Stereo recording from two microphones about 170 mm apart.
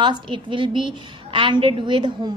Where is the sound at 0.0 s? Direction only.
30° right (ahead or behind).